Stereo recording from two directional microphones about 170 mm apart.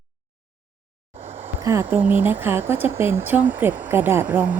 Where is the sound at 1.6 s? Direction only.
15° right (ahead or behind).